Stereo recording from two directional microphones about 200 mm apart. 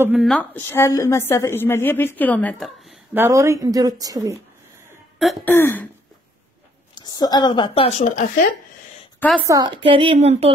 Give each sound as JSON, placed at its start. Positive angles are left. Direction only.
{"t": 0.0, "sound": "a woman's voice", "side_deg": -5}
{"t": 3.3, "sound": "speech", "side_deg": -15}
{"t": 5.2, "sound": "throat clearing", "side_deg": 0}
{"t": 5.5, "sound": "a woman's voice", "side_deg": 10}
{"t": 7.0, "sound": "a woman's voice", "side_deg": 20}
{"t": 9.5, "sound": "a woman's voice", "side_deg": -25}